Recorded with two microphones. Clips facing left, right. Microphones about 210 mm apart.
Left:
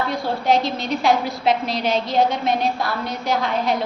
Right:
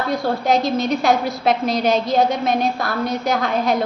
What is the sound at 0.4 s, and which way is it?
A woman's voice, 45° right (ahead or behind).